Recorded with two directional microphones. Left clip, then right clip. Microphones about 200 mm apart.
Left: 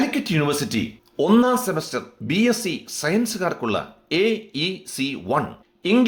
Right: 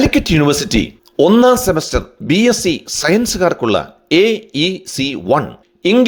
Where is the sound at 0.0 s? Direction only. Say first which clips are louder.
Right 9 dB; 45° right (ahead or behind).